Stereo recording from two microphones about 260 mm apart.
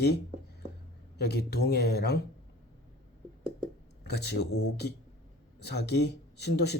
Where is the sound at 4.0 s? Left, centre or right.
Left.